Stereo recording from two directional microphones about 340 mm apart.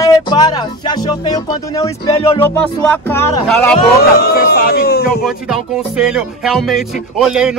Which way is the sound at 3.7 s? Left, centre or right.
Left.